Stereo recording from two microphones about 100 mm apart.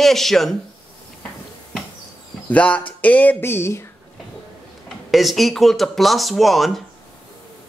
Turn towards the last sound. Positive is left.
turn(degrees=0)  # may be behind; listen again after turning